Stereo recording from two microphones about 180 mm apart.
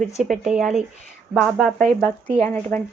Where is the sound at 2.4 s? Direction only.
10° left (ahead or behind).